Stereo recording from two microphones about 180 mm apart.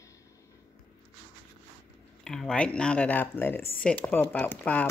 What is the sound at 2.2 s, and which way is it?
Speech, 5° left (ahead or behind).